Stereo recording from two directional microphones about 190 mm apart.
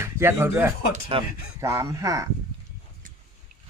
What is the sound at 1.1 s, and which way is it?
Speech, 30° right (ahead or behind).